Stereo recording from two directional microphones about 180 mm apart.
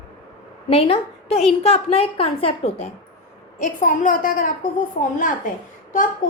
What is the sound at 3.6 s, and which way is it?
Speech, 45° left (ahead or behind).